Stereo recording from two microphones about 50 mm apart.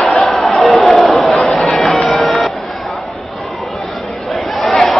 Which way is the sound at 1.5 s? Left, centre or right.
Centre.